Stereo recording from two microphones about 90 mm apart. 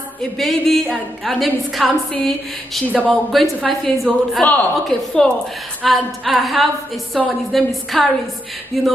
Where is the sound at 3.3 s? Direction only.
Centre (ahead or behind).